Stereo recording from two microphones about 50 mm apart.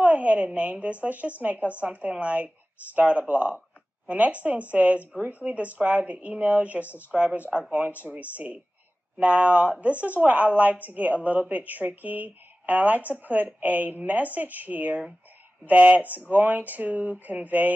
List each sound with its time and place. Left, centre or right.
0.0 s a woman's voice: right